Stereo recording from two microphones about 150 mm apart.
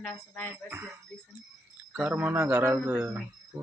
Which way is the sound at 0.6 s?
15° right (ahead or behind).